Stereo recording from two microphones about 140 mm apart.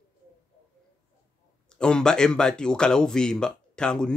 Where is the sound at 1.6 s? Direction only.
5° left (ahead or behind).